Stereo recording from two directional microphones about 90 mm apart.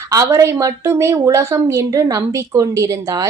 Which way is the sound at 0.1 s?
35° right (ahead or behind).